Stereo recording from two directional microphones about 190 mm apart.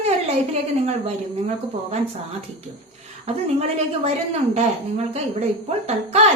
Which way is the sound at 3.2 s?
35° right (ahead or behind).